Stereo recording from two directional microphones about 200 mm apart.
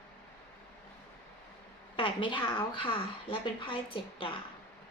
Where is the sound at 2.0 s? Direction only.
25° left (ahead or behind).